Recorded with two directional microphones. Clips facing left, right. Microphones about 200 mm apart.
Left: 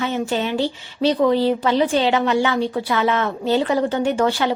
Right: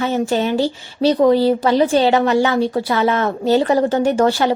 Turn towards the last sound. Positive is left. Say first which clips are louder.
# right 4 dB
turn(degrees=-40)  # may be behind; listen again after turning